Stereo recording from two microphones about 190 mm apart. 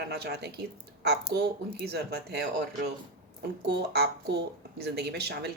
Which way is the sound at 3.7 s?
60° right (ahead or behind).